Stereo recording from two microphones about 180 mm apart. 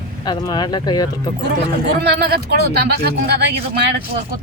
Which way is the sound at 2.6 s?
65° right (ahead or behind).